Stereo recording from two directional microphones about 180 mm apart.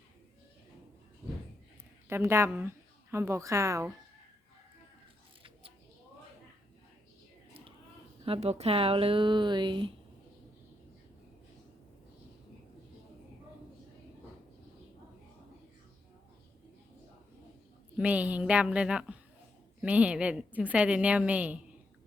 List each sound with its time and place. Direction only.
2.0 s a woman's voice: 15° right (ahead or behind)
8.2 s speech: 35° right (ahead or behind)
17.9 s a woman's voice: 5° right (ahead or behind)